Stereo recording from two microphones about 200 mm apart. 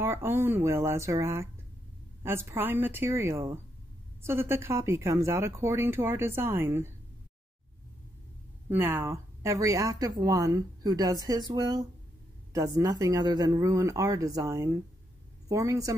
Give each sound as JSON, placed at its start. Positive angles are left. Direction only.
{"t": 0.0, "sound": "speech", "side_deg": -10}
{"t": 8.6, "sound": "speech", "side_deg": -10}